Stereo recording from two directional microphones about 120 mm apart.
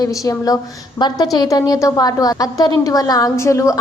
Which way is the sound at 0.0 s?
30° left (ahead or behind).